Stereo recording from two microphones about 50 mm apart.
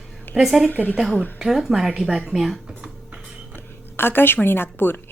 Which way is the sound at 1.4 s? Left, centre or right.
Centre.